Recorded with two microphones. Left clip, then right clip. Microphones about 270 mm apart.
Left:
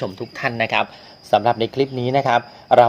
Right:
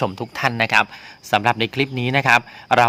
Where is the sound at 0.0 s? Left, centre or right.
Right.